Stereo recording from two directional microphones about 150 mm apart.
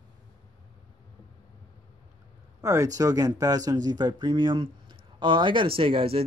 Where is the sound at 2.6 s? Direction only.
20° right (ahead or behind).